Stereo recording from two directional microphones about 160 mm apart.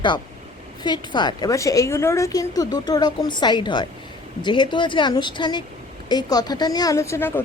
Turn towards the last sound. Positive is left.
turn(degrees=15)  # may be behind; listen again after turning